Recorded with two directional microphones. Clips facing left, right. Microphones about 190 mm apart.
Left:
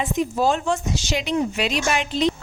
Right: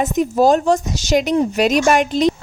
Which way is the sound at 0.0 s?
45° right (ahead or behind).